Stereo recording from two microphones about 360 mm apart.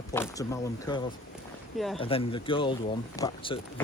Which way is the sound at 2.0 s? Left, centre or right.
Centre.